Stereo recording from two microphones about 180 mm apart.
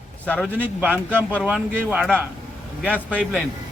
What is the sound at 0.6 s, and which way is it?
A man's voice, 10° right (ahead or behind).